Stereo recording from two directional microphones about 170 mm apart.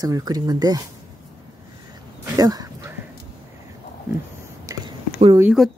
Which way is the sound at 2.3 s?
20° right (ahead or behind).